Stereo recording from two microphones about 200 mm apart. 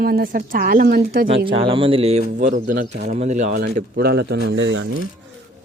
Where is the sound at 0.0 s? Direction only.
50° right (ahead or behind).